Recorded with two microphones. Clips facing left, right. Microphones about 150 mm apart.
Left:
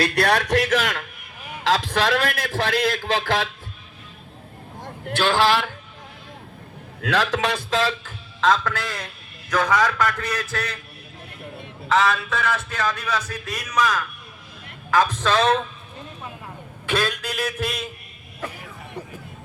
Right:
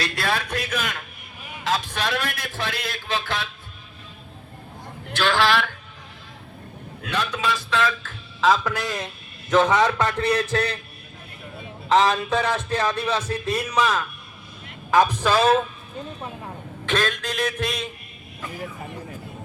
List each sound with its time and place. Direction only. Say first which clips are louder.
0.0 s a man's voice: left 6 dB; 65° left (ahead or behind); by 3.5 s 90° left
5.0 s a man's voice: left 2 dB; 40° left (ahead or behind)
7.0 s a man's voice: left 4 dB; 90° left
7.7 s a man's voice: even; 35° left (ahead or behind)
8.4 s a man's voice: even; 5° right (ahead or behind)
8.7 s a man's voice: right 2 dB; 20° right (ahead or behind)
11.9 s a man's voice: right 2 dB; 30° right (ahead or behind); by 15.6 s 5° right (ahead or behind)
16.8 s speech: even; 10° left (ahead or behind)